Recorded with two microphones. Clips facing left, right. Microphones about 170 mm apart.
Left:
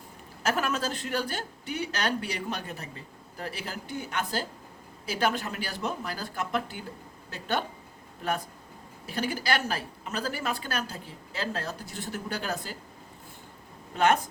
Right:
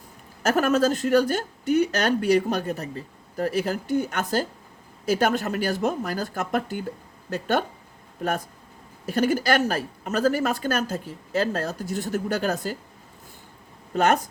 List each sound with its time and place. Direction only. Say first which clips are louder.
0.4 s speech: right 8 dB; 40° right (ahead or behind)
9.0 s speech: right 8 dB; 45° right (ahead or behind)
13.9 s speech: right 3 dB; 40° right (ahead or behind)